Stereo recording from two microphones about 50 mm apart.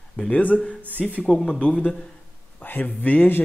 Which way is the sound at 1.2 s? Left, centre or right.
Centre.